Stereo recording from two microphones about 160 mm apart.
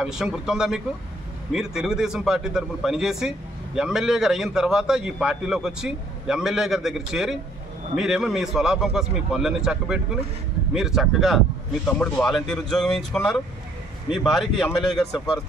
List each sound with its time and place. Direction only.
0.0 s a man's voice: 5° right (ahead or behind)